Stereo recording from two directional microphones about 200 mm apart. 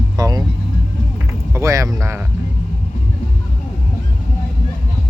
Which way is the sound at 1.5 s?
15° right (ahead or behind).